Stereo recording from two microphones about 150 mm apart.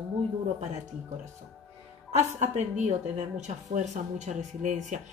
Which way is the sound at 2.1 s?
50° right (ahead or behind).